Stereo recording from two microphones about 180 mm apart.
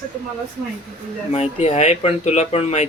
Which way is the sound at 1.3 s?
40° left (ahead or behind).